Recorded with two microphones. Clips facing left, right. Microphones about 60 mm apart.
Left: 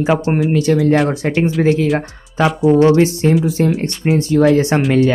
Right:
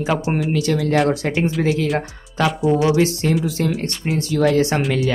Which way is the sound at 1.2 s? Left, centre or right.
Centre.